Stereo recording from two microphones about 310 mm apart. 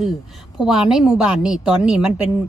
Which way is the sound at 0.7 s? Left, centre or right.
Centre.